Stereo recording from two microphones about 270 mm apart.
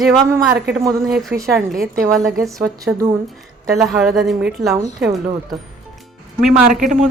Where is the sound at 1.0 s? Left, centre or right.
Centre.